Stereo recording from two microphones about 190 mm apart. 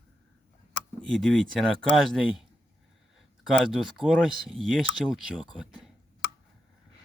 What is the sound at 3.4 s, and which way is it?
Speech, centre (ahead or behind).